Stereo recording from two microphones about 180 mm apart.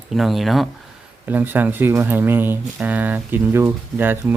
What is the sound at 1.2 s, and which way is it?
Speech, 10° right (ahead or behind).